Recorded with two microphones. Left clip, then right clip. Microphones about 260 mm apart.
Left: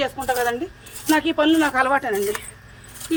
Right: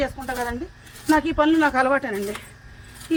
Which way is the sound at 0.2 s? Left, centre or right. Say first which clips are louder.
Left 6 dB; centre.